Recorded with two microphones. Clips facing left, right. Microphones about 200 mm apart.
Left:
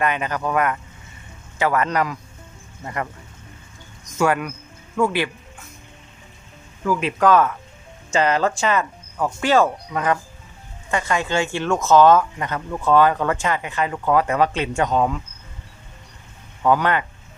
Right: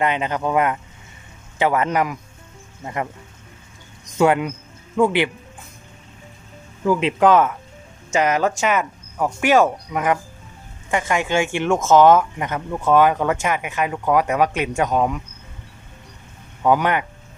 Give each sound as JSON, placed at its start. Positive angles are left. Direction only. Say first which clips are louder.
{"t": 0.0, "sound": "speech", "louder": "right 2 dB", "side_deg": -20}
{"t": 4.2, "sound": "speech", "louder": "right 3 dB", "side_deg": -20}
{"t": 6.8, "sound": "speech", "louder": "right 2 dB", "side_deg": -25}
{"t": 16.6, "sound": "speech", "louder": "right 1 dB", "side_deg": -15}